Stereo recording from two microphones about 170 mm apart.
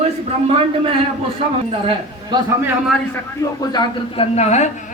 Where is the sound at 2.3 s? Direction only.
25° right (ahead or behind).